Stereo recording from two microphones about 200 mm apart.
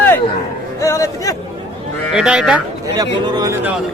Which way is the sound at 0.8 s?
15° left (ahead or behind).